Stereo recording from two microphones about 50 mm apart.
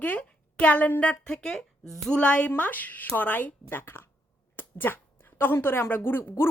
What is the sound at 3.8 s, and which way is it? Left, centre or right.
A woman's voice, left.